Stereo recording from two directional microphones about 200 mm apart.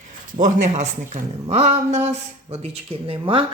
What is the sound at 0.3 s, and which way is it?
A man's voice, 40° right (ahead or behind).